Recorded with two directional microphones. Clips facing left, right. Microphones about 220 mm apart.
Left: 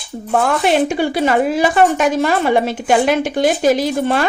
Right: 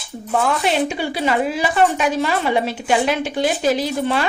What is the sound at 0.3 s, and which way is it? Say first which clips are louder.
A woman's voice: left 4 dB; 50° left (ahead or behind).